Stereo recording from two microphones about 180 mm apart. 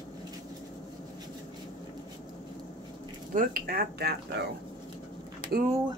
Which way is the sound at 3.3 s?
55° right (ahead or behind).